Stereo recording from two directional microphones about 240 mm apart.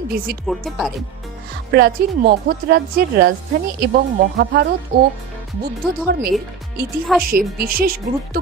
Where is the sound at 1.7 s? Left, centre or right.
Right.